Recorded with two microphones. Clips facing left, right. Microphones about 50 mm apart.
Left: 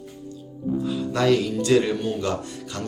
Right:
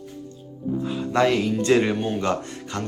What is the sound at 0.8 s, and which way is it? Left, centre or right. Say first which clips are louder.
Speech: right 3 dB; right.